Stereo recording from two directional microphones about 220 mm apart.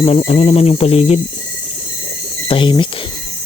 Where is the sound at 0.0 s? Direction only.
25° left (ahead or behind).